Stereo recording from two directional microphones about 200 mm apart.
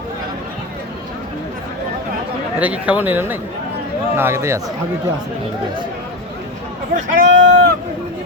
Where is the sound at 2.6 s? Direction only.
5° right (ahead or behind).